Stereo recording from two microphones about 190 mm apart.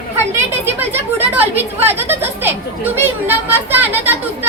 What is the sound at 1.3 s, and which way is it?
Children playing, 10° right (ahead or behind).